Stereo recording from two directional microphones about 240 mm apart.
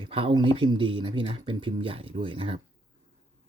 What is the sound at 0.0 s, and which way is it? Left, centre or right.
Speech, right.